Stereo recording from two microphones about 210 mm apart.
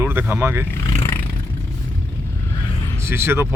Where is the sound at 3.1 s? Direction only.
10° right (ahead or behind).